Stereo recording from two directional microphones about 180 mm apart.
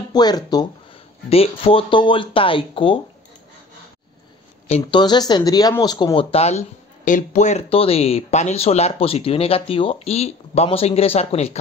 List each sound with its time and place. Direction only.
0.1 s speech: 20° left (ahead or behind)
1.3 s speech: 30° left (ahead or behind)
4.6 s speech: 35° left (ahead or behind)
5.0 s speech: 25° left (ahead or behind)